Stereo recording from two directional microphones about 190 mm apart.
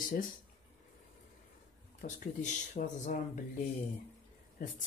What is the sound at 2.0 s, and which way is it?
Speech, 45° left (ahead or behind).